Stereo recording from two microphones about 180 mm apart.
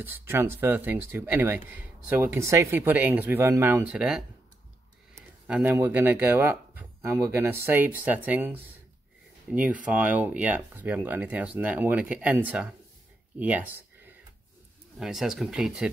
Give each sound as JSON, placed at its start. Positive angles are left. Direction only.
{"t": 0.0, "sound": "speech", "side_deg": -10}
{"t": 5.5, "sound": "speech", "side_deg": -10}